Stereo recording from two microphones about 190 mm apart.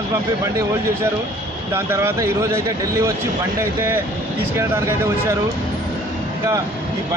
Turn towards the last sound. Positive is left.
turn(degrees=-15)  # may be behind; listen again after turning